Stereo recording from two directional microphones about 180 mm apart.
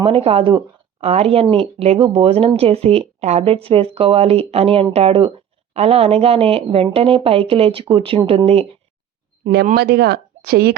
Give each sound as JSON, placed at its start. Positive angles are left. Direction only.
{"t": 0.0, "sound": "speech", "side_deg": -30}
{"t": 9.7, "sound": "speech", "side_deg": -65}